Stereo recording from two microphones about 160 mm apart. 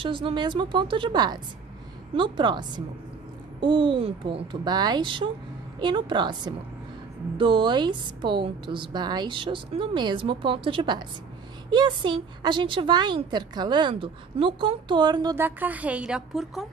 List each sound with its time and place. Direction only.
0.0 s a woman's voice: 30° right (ahead or behind)
15.3 s a woman's voice: 10° right (ahead or behind)